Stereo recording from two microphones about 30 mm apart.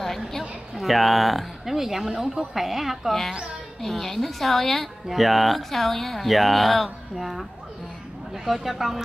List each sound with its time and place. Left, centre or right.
0.4 s a woman's voice: centre
3.1 s a woman's voice: centre
5.7 s a woman's voice: centre
8.6 s speech: centre